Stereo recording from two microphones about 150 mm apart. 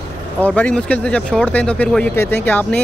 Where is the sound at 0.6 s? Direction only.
10° left (ahead or behind).